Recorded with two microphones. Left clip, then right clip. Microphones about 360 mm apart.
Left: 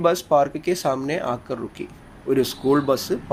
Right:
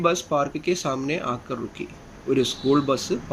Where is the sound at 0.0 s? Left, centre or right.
Centre.